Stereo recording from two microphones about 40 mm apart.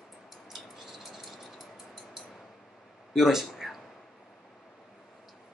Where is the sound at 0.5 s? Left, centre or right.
Centre.